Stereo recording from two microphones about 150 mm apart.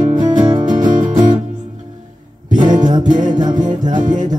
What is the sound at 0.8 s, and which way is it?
Music, 60° right (ahead or behind).